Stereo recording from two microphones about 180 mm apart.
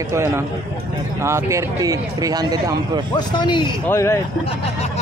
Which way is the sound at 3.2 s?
25° left (ahead or behind).